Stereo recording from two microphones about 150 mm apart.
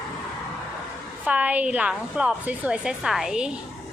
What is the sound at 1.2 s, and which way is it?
A woman's voice, 10° right (ahead or behind).